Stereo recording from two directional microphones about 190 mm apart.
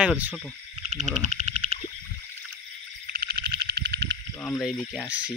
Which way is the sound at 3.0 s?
55° right (ahead or behind).